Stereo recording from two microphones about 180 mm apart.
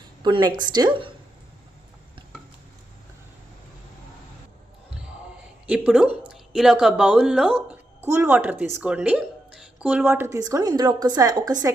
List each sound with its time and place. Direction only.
0.2 s speech: 25° right (ahead or behind)
5.6 s a woman's voice: 5° right (ahead or behind)